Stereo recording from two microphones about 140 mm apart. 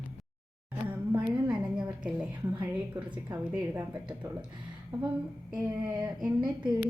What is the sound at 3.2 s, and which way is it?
A woman's voice, 10° right (ahead or behind).